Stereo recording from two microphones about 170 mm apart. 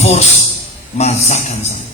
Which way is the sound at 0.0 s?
40° left (ahead or behind).